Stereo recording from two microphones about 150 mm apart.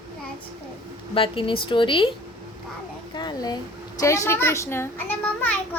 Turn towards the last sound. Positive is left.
turn(degrees=10)  # may be behind; listen again after turning